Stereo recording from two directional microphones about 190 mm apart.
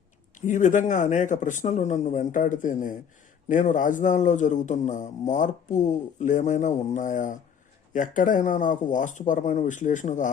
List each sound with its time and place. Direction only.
0.4 s a man's voice: 40° left (ahead or behind)